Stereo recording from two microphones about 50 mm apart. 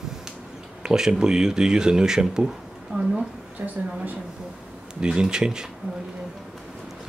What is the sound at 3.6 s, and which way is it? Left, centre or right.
Speech, right.